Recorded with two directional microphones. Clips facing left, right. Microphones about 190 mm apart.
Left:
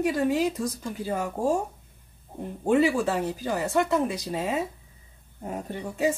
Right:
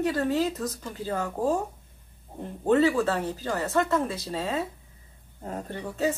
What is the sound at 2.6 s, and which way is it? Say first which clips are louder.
Speech: even; 10° left (ahead or behind).